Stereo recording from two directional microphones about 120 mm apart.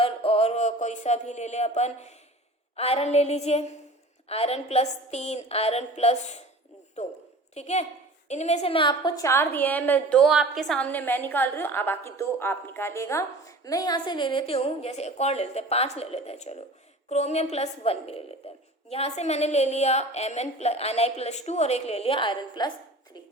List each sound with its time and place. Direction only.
0.0 s a sound: 55° left (ahead or behind); by 2.1 s 70° left (ahead or behind)
2.7 s a woman's voice: 55° left (ahead or behind); by 9.2 s 40° left (ahead or behind)
9.2 s a woman's voice: 20° left (ahead or behind)
10.2 s a woman's voice: centre (ahead or behind); by 18.2 s 60° left (ahead or behind)
18.4 s a sound: 55° left (ahead or behind)
18.9 s a woman's voice: 60° left (ahead or behind); by 22.7 s 40° left (ahead or behind)